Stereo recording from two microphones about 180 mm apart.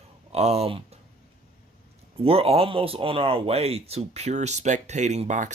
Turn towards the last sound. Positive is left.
turn(degrees=-45)  # may be behind; listen again after turning